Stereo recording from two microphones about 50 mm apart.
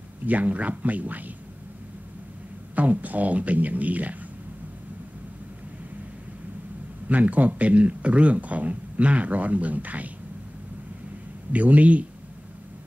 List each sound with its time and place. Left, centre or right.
0.3 s speech: right
2.7 s speech: right
7.1 s speech: right
11.5 s speech: right